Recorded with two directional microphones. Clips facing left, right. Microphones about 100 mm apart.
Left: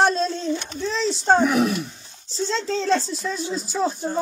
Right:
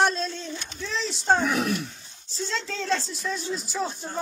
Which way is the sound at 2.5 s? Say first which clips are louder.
Left 6 dB; 30° left (ahead or behind).